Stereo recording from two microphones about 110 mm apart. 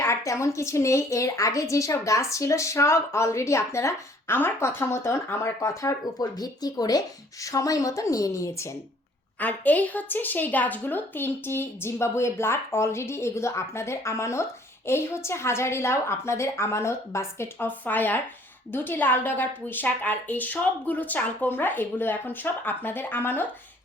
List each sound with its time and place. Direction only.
0.0 s a woman's voice: 25° left (ahead or behind)
9.4 s a woman's voice: 15° left (ahead or behind)